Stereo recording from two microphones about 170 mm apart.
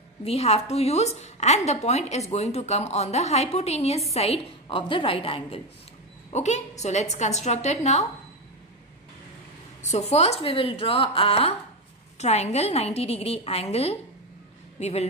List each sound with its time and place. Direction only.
0.2 s a woman's voice: 35° left (ahead or behind)
9.8 s a woman's voice: 40° left (ahead or behind)